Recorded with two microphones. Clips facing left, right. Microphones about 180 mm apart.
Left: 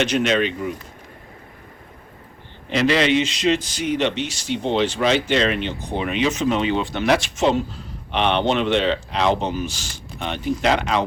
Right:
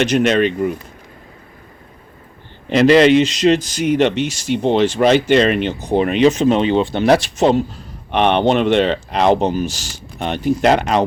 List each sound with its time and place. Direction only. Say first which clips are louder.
0.0 s speech: right 5 dB; 45° right (ahead or behind)
2.6 s a man's voice: right 8 dB; 40° right (ahead or behind)
8.1 s speech: right 5 dB; 50° right (ahead or behind)